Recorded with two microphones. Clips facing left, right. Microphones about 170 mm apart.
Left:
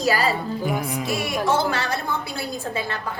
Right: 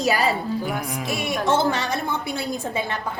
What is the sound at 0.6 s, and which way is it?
Music, 5° left (ahead or behind).